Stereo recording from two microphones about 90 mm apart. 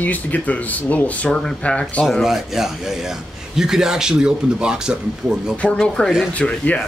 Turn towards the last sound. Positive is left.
turn(degrees=15)  # may be behind; listen again after turning